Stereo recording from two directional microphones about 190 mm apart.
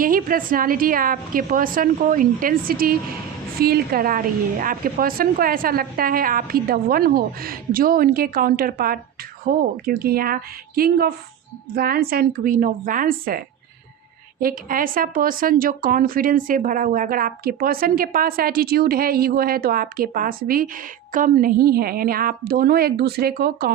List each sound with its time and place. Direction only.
0.0 s a woman's voice: 50° right (ahead or behind)